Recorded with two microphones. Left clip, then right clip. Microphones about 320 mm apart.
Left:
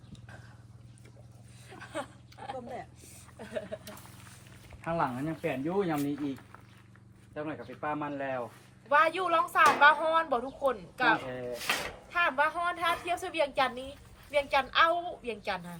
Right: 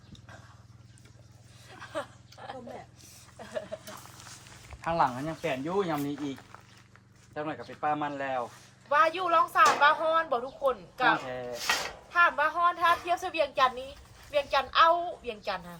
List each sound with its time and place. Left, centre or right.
1.9 s a sound: centre
4.8 s speech: centre
8.9 s speech: centre